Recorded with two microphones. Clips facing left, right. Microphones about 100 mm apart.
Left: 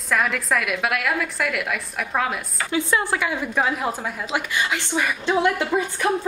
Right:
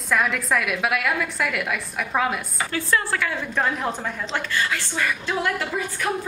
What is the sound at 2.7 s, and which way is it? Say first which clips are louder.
A woman's voice: left 2 dB; 15° left (ahead or behind).